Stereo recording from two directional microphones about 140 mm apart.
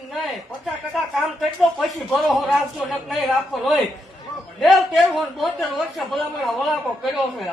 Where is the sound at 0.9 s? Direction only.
Centre (ahead or behind).